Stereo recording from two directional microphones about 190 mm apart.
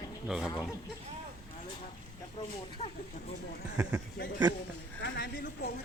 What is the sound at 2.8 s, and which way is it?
Speech, 35° left (ahead or behind).